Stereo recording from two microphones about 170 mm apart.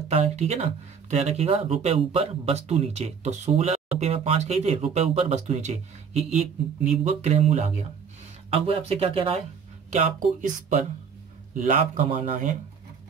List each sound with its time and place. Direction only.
0.1 s speech: 40° right (ahead or behind)
9.8 s speech: 45° right (ahead or behind)